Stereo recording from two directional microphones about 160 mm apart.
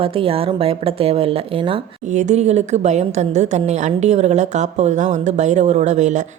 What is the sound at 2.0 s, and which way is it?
A woman's voice, 50° right (ahead or behind).